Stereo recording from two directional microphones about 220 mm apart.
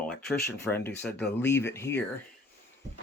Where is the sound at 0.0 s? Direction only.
5° left (ahead or behind).